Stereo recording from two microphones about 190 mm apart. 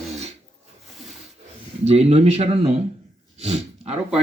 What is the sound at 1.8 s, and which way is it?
Speech, 35° right (ahead or behind).